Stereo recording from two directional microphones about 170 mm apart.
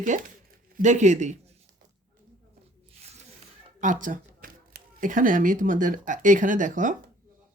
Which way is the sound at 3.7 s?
50° right (ahead or behind).